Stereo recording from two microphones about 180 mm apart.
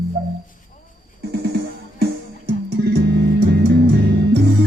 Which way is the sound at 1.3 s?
70° right (ahead or behind).